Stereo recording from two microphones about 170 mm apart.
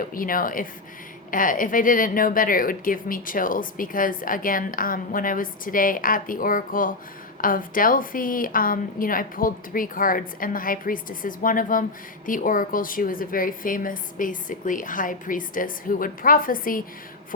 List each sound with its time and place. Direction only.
0.0 s a woman's voice: 55° left (ahead or behind)